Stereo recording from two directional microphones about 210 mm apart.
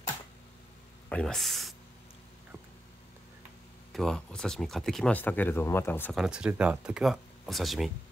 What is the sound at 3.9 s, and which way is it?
Speech, centre (ahead or behind).